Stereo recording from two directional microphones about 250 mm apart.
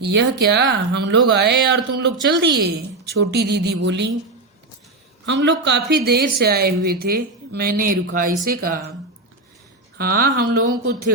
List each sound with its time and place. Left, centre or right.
0.0 s a woman's voice: right
5.2 s a woman's voice: right
10.0 s a woman's voice: right